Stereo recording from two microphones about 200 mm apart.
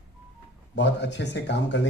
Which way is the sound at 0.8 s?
60° left (ahead or behind).